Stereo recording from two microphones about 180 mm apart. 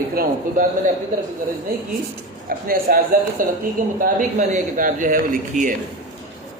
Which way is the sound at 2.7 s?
55° right (ahead or behind).